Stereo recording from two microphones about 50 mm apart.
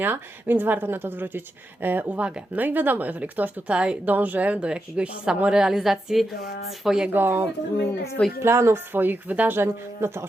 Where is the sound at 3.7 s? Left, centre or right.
Right.